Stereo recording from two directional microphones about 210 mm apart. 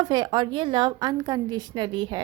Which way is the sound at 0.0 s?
20° right (ahead or behind).